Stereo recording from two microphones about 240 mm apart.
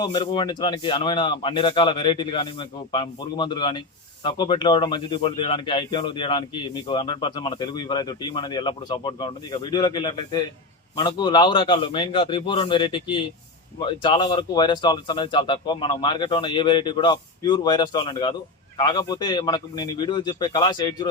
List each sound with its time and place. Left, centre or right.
0.0 s a man's voice: centre